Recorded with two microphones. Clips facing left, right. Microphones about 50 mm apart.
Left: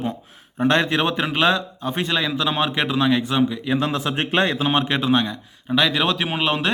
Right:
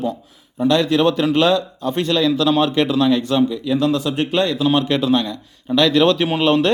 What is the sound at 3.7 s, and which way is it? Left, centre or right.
A man's voice, left.